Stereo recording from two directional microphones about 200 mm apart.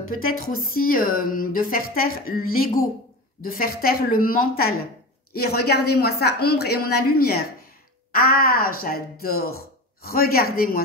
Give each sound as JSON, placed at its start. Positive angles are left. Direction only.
{"t": 0.1, "sound": "speech", "side_deg": 45}